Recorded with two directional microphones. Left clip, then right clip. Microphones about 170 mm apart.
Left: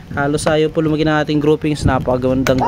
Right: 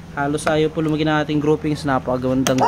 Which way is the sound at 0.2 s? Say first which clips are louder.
Left 3 dB; 60° left (ahead or behind).